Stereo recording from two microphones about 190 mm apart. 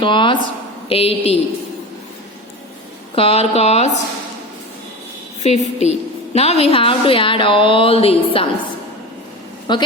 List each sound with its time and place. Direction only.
0.0 s a woman's voice: 25° left (ahead or behind)
3.2 s speech: 30° left (ahead or behind)
5.4 s a woman's voice: 35° left (ahead or behind)
9.7 s a woman's voice: 25° left (ahead or behind)